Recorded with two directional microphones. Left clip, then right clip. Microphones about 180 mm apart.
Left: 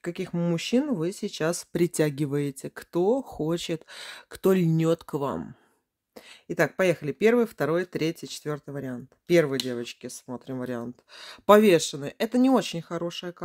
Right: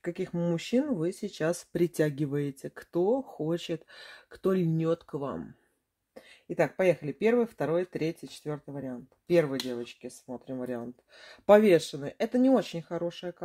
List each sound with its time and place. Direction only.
0.0 s speech: 30° left (ahead or behind)